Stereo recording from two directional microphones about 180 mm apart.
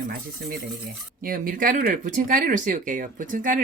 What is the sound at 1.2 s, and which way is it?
Speech, 50° right (ahead or behind).